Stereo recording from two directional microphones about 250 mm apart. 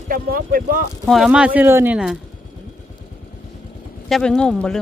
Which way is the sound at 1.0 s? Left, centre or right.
Centre.